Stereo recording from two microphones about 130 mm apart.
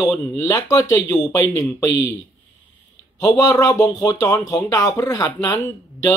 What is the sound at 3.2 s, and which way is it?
Speech, 25° left (ahead or behind).